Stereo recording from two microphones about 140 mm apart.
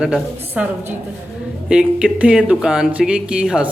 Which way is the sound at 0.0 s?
10° right (ahead or behind).